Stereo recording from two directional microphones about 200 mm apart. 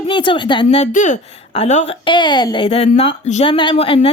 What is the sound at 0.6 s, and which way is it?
A woman's voice, 35° left (ahead or behind).